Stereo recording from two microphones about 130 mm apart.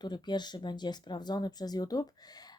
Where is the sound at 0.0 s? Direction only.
35° left (ahead or behind).